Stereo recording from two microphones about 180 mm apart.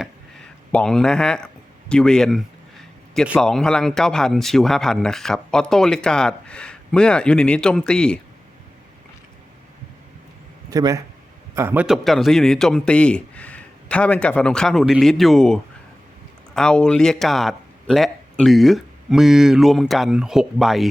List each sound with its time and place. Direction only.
0.0 s a sound: 5° left (ahead or behind)
1.9 s speech: 5° left (ahead or behind)
10.7 s speech: 20° right (ahead or behind); by 20.8 s centre (ahead or behind)